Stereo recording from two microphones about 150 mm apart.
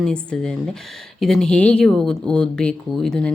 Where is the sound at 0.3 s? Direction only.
5° left (ahead or behind).